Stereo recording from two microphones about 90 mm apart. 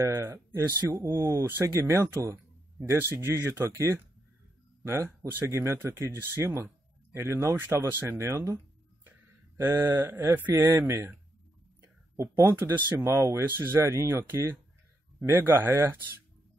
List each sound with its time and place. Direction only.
0.0 s speech: 25° right (ahead or behind)
4.8 s speech: 30° right (ahead or behind)
9.0 s a sound: 25° right (ahead or behind)
10.5 s speech: 30° right (ahead or behind)